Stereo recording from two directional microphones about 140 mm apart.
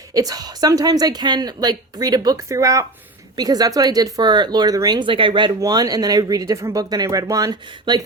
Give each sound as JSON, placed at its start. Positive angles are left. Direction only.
{"t": 0.1, "sound": "speech", "side_deg": -25}